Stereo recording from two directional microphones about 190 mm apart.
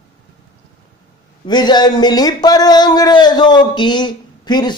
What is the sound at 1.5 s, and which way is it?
Speech, 20° left (ahead or behind).